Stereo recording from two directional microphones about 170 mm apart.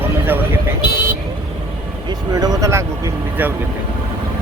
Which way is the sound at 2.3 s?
20° right (ahead or behind).